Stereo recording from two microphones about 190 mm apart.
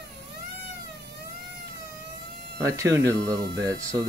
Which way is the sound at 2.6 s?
15° right (ahead or behind).